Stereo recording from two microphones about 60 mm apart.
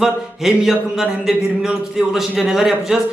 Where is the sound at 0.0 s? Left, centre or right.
Centre.